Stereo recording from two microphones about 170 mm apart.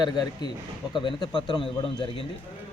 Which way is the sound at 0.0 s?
25° left (ahead or behind).